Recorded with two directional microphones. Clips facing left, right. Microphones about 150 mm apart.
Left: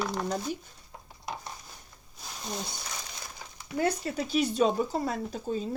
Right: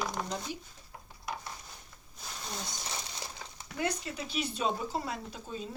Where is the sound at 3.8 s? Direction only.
40° left (ahead or behind).